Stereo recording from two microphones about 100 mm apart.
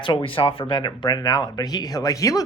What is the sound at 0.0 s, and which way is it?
Speech, 60° left (ahead or behind).